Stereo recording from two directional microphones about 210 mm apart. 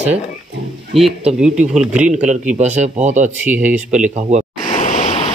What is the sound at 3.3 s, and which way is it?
Speech, 5° right (ahead or behind).